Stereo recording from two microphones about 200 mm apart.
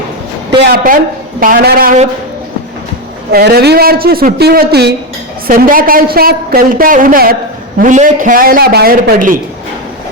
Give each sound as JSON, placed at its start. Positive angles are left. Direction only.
{"t": 0.6, "sound": "a woman's voice", "side_deg": -50}
{"t": 3.3, "sound": "a woman's voice", "side_deg": -50}